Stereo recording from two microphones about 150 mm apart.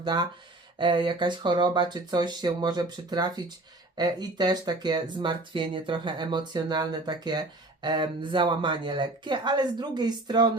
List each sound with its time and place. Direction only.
0.0 s speech: 30° right (ahead or behind)